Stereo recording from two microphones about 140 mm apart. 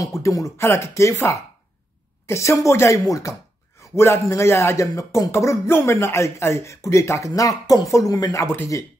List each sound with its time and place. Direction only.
0.0 s speech: 20° left (ahead or behind)